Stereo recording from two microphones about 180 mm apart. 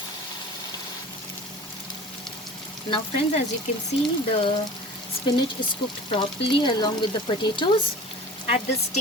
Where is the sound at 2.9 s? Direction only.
30° left (ahead or behind).